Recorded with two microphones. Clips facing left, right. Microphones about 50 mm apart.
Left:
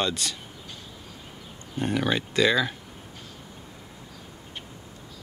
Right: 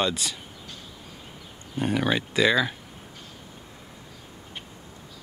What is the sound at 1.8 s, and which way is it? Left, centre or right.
Speech, centre.